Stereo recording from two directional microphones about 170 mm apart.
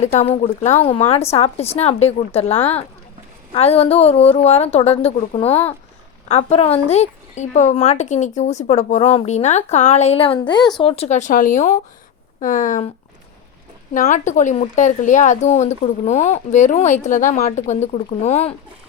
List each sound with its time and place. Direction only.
0.0 s a woman's voice: 45° left (ahead or behind)
5.5 s speech: 10° left (ahead or behind)
6.2 s a woman's voice: 40° left (ahead or behind)
13.9 s speech: 50° left (ahead or behind)